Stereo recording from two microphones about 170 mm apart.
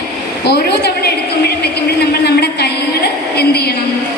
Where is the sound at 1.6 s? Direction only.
70° left (ahead or behind).